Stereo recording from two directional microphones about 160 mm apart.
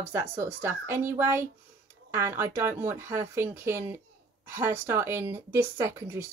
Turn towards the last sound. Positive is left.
turn(degrees=-15)  # may be behind; listen again after turning